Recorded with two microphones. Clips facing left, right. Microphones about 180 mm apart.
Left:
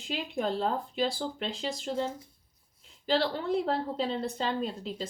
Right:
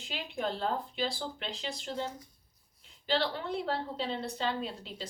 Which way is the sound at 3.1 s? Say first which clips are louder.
Left 4 dB; 40° left (ahead or behind).